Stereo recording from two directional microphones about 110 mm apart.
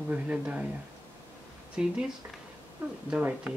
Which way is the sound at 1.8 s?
10° right (ahead or behind).